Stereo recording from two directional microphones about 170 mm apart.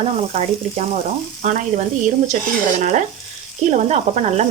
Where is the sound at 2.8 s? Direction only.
45° right (ahead or behind).